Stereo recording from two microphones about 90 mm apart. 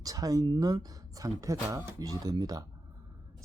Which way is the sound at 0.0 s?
45° right (ahead or behind).